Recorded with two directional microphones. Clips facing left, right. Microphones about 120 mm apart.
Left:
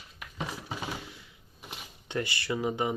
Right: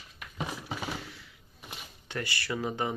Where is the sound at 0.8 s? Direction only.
15° left (ahead or behind).